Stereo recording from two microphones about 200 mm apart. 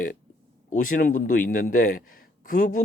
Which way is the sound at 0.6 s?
40° left (ahead or behind).